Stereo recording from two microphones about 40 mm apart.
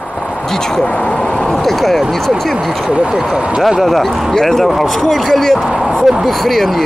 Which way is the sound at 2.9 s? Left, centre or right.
Right.